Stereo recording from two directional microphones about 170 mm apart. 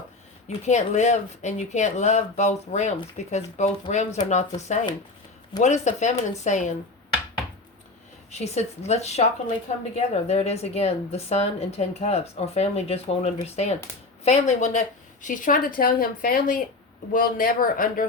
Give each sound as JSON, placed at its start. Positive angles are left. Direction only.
{"t": 0.4, "sound": "speech", "side_deg": 45}
{"t": 8.3, "sound": "a woman's voice", "side_deg": 40}